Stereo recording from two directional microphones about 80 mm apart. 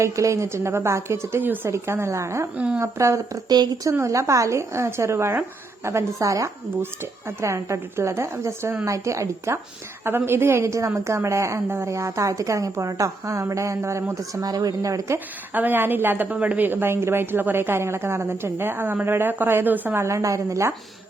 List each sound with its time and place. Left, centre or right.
0.0 s a woman's voice: right
10.0 s a woman's voice: right
14.4 s speech: right
15.5 s a woman's voice: right